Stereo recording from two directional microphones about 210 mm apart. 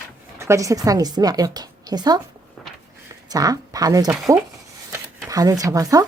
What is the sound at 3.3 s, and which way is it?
Speech, 15° right (ahead or behind).